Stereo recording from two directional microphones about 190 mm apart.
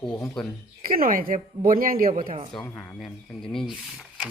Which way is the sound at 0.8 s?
50° right (ahead or behind).